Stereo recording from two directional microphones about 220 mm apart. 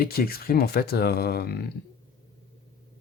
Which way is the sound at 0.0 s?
45° left (ahead or behind).